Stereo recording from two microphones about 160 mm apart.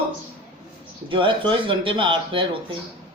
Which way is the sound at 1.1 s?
30° right (ahead or behind).